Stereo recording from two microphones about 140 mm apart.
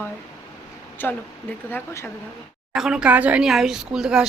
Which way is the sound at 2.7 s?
5° right (ahead or behind).